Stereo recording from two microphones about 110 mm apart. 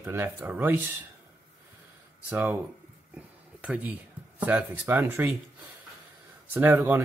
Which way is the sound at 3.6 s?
15° right (ahead or behind).